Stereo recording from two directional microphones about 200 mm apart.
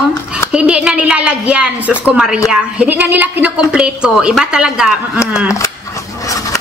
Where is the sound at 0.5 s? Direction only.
5° right (ahead or behind).